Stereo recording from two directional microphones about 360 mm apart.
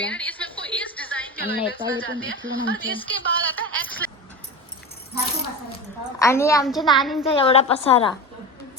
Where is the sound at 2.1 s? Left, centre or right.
Right.